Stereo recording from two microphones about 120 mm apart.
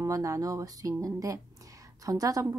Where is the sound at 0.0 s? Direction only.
30° right (ahead or behind).